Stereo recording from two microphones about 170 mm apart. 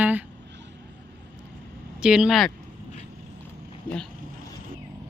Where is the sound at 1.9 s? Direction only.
5° right (ahead or behind).